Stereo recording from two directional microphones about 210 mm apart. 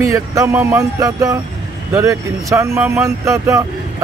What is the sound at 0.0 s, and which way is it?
Speech, 15° right (ahead or behind).